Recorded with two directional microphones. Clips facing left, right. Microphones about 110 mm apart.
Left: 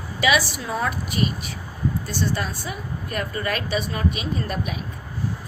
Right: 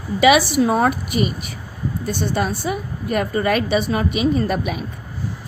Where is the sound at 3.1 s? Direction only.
90° right.